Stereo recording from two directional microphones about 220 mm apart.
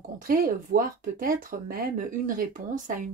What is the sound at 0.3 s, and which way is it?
Speech, 40° right (ahead or behind).